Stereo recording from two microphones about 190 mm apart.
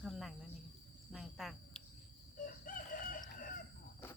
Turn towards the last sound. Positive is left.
turn(degrees=45)  # may be behind; listen again after turning